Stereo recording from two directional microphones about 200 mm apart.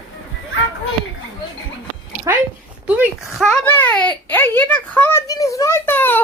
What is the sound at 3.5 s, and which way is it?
A child's voice, 10° left (ahead or behind).